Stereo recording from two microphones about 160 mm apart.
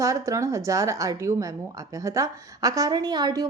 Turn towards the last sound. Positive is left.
turn(degrees=-25)  # may be behind; listen again after turning